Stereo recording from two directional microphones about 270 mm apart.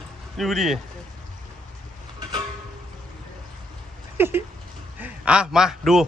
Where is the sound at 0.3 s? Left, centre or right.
Centre.